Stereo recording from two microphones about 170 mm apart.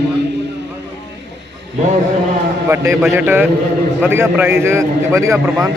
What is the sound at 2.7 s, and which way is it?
A man's voice, 15° right (ahead or behind).